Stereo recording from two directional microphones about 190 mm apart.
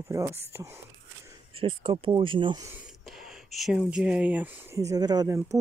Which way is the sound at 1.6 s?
25° right (ahead or behind).